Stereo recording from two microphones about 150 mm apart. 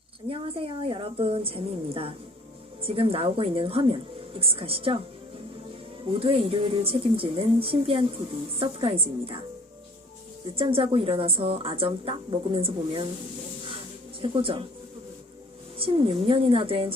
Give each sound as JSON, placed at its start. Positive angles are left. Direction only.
{"t": 0.3, "sound": "speech", "side_deg": -40}
{"t": 6.1, "sound": "speech", "side_deg": -40}
{"t": 10.5, "sound": "speech", "side_deg": -40}
{"t": 14.2, "sound": "speech", "side_deg": -35}
{"t": 15.8, "sound": "speech", "side_deg": -35}